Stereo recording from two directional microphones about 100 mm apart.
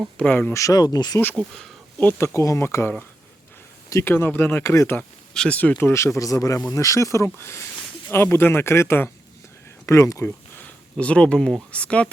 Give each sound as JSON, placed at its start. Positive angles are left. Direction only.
{"t": 0.2, "sound": "speech", "side_deg": 15}
{"t": 0.5, "sound": "speech", "side_deg": 35}
{"t": 1.4, "sound": "speech", "side_deg": 5}
{"t": 2.0, "sound": "speech", "side_deg": 20}
{"t": 4.1, "sound": "speech", "side_deg": 20}
{"t": 4.9, "sound": "speech", "side_deg": 10}
{"t": 6.1, "sound": "speech", "side_deg": 35}
{"t": 10.9, "sound": "speech", "side_deg": 10}